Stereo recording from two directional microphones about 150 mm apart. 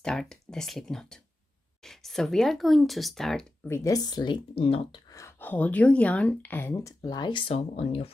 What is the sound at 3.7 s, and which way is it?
Speech, 25° left (ahead or behind).